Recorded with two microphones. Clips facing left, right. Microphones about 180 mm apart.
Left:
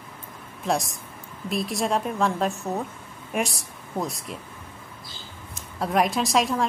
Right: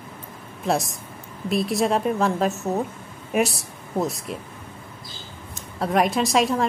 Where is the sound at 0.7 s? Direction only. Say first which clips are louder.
Right 2 dB; centre (ahead or behind).